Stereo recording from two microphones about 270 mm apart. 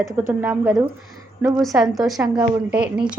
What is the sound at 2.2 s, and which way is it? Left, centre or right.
Speech, centre.